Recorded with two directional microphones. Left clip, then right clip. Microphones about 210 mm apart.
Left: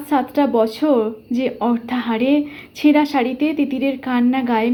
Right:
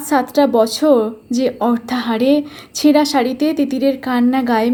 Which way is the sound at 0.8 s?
25° right (ahead or behind).